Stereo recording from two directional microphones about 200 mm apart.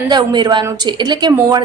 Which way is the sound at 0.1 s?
20° right (ahead or behind).